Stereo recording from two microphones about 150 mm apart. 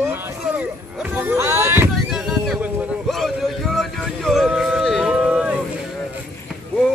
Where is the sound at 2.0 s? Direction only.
5° right (ahead or behind).